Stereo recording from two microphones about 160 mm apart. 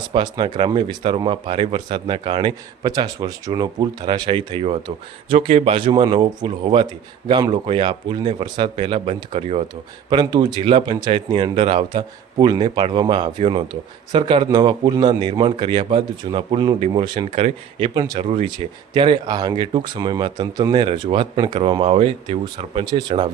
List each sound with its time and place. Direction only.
0.1 s speech: 30° right (ahead or behind)
10.1 s speech: 25° right (ahead or behind)